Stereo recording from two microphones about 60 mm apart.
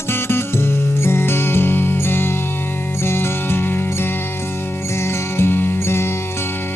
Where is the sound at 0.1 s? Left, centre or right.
Left.